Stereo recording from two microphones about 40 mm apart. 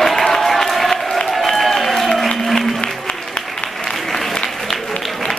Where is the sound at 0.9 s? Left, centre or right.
Centre.